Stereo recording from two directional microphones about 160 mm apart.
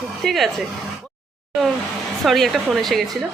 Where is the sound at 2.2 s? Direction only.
Centre (ahead or behind).